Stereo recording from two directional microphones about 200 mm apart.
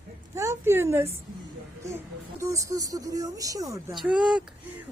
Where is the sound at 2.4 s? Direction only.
15° right (ahead or behind).